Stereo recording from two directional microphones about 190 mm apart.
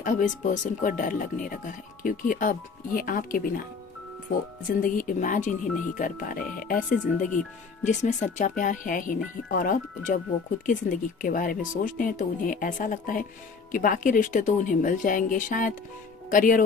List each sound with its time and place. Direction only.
0.0 s speech: 40° left (ahead or behind)
4.7 s speech: 45° left (ahead or behind)